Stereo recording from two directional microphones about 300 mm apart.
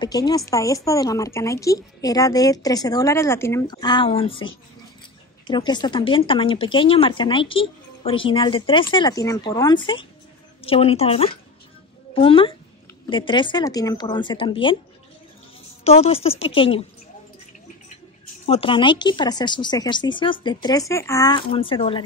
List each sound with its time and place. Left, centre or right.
0.0 s speech: centre
5.5 s a woman's voice: centre
15.8 s a woman's voice: centre
18.4 s speech: centre